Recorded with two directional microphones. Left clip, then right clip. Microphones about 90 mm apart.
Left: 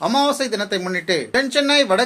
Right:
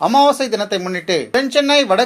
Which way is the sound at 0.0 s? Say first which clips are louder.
Right 6 dB; 35° right (ahead or behind).